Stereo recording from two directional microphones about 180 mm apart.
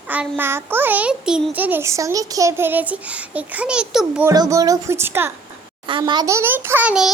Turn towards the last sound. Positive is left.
turn(degrees=-5)  # may be behind; listen again after turning